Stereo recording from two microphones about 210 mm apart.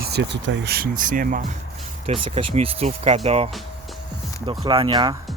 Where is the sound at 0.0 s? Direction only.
50° right (ahead or behind).